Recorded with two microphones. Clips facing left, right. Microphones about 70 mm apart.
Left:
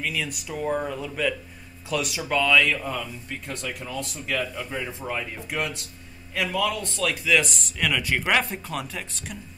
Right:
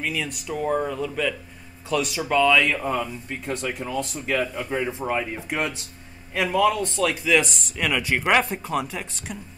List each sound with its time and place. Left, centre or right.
0.0 s speech: centre